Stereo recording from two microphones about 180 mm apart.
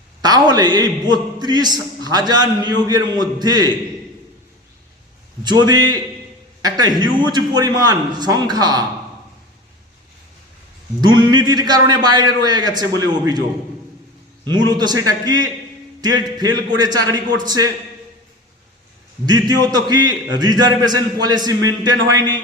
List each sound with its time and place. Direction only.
0.2 s a man's voice: 20° right (ahead or behind)
5.4 s a man's voice: 25° right (ahead or behind)
11.0 s a man's voice: 25° right (ahead or behind)
14.4 s a man's voice: 25° right (ahead or behind)
19.2 s a man's voice: 20° right (ahead or behind)